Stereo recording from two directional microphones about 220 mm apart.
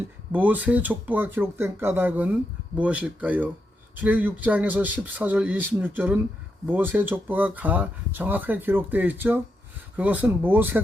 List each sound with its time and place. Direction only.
0.3 s speech: 10° right (ahead or behind)